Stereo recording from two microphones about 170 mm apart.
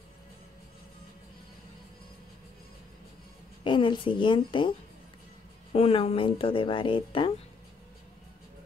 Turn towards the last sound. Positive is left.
turn(degrees=30)  # may be behind; listen again after turning